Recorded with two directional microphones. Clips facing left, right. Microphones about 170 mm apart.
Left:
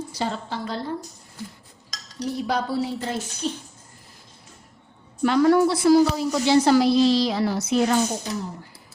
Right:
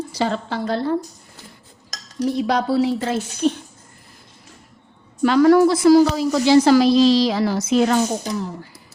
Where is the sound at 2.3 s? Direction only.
90° right.